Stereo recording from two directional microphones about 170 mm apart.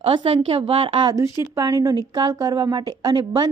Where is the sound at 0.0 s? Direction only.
35° right (ahead or behind).